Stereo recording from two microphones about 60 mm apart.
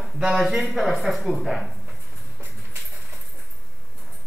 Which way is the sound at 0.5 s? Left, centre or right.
Centre.